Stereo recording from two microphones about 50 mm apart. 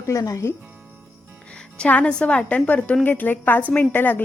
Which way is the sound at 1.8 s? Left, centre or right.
Left.